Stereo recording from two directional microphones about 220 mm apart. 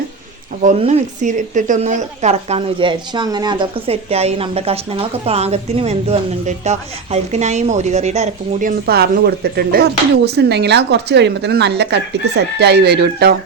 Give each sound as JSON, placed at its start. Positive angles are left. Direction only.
{"t": 0.6, "sound": "a woman's voice", "side_deg": -30}
{"t": 8.9, "sound": "speech", "side_deg": -45}